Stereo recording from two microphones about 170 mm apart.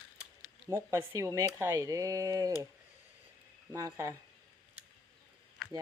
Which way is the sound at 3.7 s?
20° right (ahead or behind).